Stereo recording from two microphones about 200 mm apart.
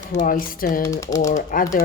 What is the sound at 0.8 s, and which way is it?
Speech, 15° left (ahead or behind).